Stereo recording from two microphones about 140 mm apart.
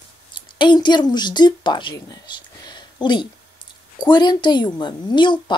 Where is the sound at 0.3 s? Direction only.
35° left (ahead or behind).